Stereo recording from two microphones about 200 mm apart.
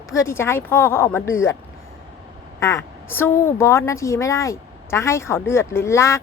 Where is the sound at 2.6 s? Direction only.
15° left (ahead or behind).